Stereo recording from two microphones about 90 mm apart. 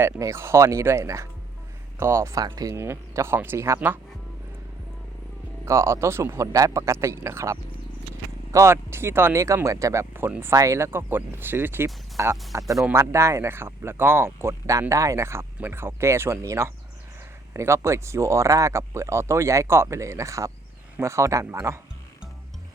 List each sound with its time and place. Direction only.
0.2 s speech: 30° right (ahead or behind)
5.6 s speech: 30° right (ahead or behind)
10.2 s speech: 20° right (ahead or behind)
10.5 s speech: 35° right (ahead or behind)